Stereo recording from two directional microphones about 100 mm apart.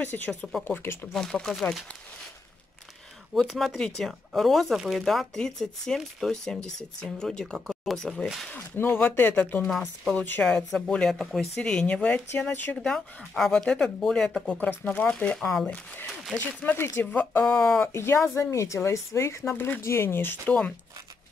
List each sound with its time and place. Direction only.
0.0 s speech: 20° left (ahead or behind)
0.3 s speech: 5° left (ahead or behind)
0.7 s speech: 25° left (ahead or behind)
1.1 s speech: 5° left (ahead or behind)
3.3 s speech: centre (ahead or behind)
8.7 s speech: 25° left (ahead or behind)
9.7 s speech: centre (ahead or behind)
10.1 s speech: 20° left (ahead or behind)
10.4 s speech: 10° left (ahead or behind)
14.6 s speech: 15° left (ahead or behind)
15.6 s speech: 15° left (ahead or behind)
17.9 s speech: 30° left (ahead or behind)